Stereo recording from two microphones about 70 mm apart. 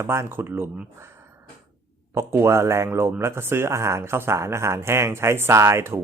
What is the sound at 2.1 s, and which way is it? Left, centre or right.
Speech, right.